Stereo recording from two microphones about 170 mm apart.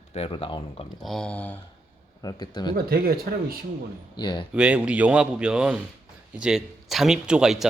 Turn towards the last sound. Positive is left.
turn(degrees=-5)  # may be behind; listen again after turning